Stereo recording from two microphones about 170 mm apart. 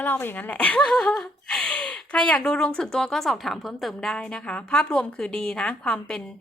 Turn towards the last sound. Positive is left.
turn(degrees=5)  # may be behind; listen again after turning